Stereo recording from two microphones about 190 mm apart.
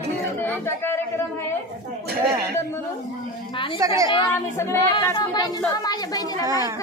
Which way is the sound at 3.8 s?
15° right (ahead or behind).